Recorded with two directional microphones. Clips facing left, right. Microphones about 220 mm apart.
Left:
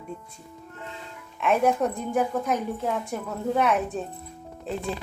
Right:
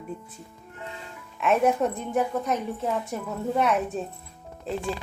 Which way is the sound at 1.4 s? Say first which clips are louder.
Even; centre (ahead or behind).